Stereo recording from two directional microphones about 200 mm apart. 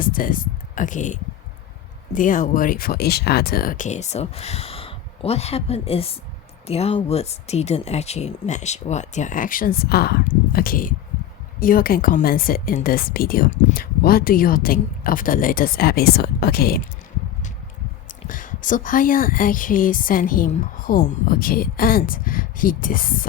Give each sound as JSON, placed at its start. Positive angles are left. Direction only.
{"t": 0.0, "sound": "speech", "side_deg": 45}
{"t": 18.3, "sound": "speech", "side_deg": 40}